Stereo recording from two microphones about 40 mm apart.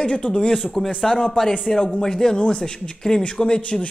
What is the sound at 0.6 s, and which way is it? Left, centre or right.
Speech, centre.